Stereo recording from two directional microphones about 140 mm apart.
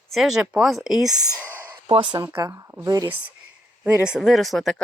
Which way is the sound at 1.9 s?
40° right (ahead or behind).